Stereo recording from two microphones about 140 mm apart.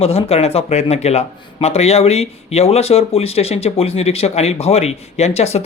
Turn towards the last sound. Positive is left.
turn(degrees=50)  # may be behind; listen again after turning